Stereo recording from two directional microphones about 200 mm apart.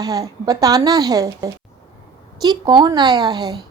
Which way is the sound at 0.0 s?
15° right (ahead or behind).